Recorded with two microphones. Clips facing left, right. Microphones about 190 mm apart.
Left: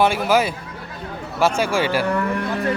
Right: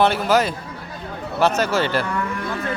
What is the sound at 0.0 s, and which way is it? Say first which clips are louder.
Speech: even; 10° left (ahead or behind).